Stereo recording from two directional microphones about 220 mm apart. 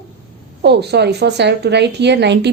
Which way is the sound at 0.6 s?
50° right (ahead or behind).